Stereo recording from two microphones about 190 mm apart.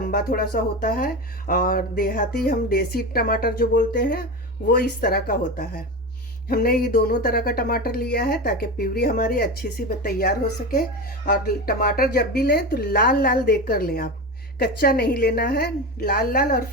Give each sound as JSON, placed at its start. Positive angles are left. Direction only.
{"t": 0.0, "sound": "a woman's voice", "side_deg": 50}